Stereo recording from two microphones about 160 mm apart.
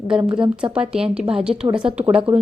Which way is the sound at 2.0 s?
35° right (ahead or behind).